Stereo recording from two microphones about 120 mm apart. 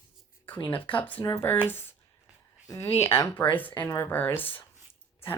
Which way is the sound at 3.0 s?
20° left (ahead or behind).